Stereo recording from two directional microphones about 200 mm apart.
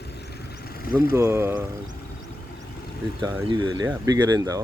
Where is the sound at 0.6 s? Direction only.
50° left (ahead or behind).